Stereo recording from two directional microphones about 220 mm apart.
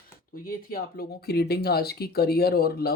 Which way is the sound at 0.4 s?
45° left (ahead or behind).